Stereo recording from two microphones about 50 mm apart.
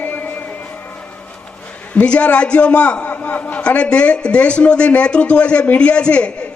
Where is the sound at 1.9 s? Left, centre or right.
Left.